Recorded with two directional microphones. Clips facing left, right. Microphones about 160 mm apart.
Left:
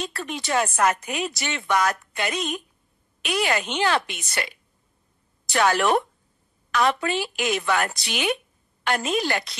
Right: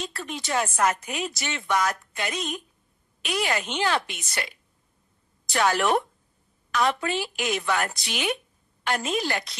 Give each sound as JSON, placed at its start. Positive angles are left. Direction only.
{"t": 0.0, "sound": "speech", "side_deg": 65}
{"t": 5.5, "sound": "speech", "side_deg": 75}